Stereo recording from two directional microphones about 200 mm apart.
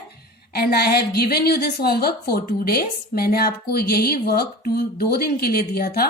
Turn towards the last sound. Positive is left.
turn(degrees=50)  # may be behind; listen again after turning